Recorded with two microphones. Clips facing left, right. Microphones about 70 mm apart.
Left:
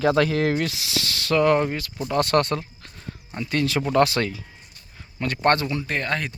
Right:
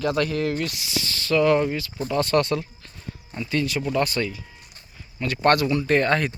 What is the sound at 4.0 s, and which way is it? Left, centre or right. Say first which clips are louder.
Speech: left 6 dB; left.